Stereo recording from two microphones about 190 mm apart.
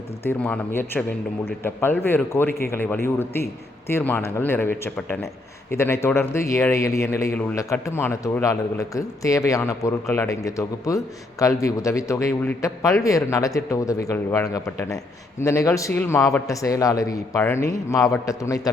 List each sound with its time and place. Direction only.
0.3 s speech: 5° left (ahead or behind)